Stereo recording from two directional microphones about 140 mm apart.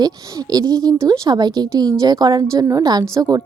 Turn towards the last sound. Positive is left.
turn(degrees=-25)  # may be behind; listen again after turning